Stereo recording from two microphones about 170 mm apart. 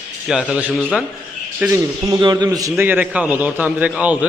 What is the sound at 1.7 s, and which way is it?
A man's voice, 20° right (ahead or behind).